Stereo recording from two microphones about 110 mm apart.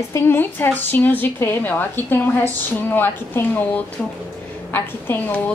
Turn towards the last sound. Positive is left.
turn(degrees=20)  # may be behind; listen again after turning